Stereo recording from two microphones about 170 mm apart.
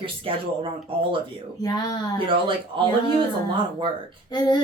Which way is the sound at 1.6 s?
20° left (ahead or behind).